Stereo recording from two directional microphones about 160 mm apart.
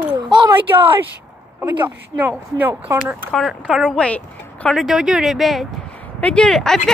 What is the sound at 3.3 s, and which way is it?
Speech, centre (ahead or behind).